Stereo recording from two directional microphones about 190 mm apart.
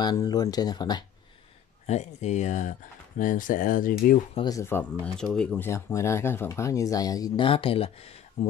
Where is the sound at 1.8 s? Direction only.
35° left (ahead or behind).